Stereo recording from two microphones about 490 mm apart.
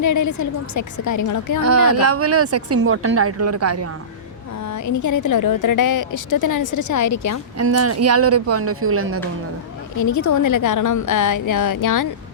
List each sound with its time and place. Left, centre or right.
0.0 s a woman's voice: left
1.9 s speech: right
4.7 s a woman's voice: left
7.6 s speech: right
10.0 s a woman's voice: left